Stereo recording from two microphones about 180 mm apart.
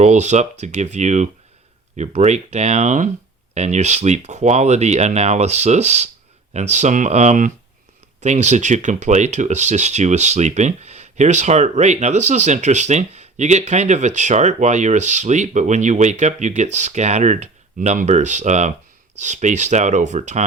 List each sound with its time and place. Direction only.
0.0 s speech: 40° right (ahead or behind)